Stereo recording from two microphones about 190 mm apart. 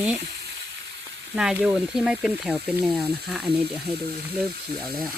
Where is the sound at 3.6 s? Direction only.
55° right (ahead or behind).